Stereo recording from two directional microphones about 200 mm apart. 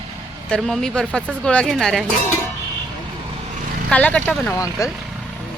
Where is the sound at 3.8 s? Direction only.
5° left (ahead or behind).